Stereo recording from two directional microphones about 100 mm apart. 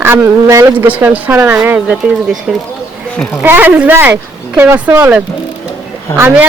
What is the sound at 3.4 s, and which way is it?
A woman's voice, 20° right (ahead or behind).